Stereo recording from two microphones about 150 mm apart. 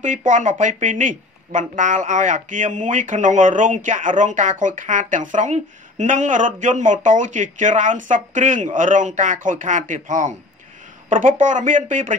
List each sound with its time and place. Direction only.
0.0 s speech: 60° right (ahead or behind)